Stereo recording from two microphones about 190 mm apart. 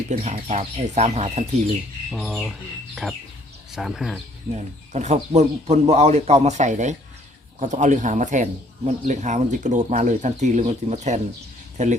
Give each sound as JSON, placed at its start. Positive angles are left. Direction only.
{"t": 0.1, "sound": "speech", "side_deg": -35}
{"t": 2.0, "sound": "speech", "side_deg": 0}
{"t": 4.5, "sound": "speech", "side_deg": -40}